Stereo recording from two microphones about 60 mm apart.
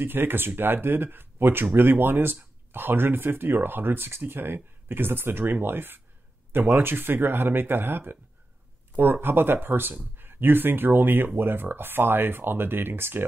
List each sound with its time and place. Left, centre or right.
0.0 s speech: right